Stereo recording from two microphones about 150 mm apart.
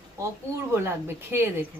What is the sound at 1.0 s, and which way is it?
Speech, 15° right (ahead or behind).